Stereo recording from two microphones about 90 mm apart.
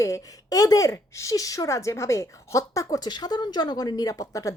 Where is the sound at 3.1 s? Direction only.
50° left (ahead or behind).